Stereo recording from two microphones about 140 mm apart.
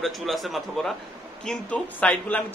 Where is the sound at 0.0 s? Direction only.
Centre (ahead or behind).